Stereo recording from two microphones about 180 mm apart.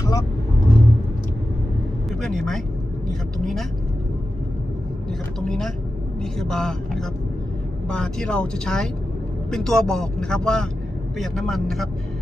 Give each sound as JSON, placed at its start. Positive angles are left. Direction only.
{"t": 0.0, "sound": "speech", "side_deg": 20}
{"t": 2.0, "sound": "speech", "side_deg": 0}
{"t": 5.5, "sound": "speech", "side_deg": 0}